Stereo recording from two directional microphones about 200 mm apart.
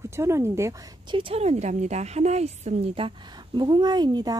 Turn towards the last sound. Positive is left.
turn(degrees=-20)  # may be behind; listen again after turning